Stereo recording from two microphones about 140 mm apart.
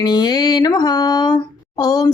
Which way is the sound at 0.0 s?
30° left (ahead or behind).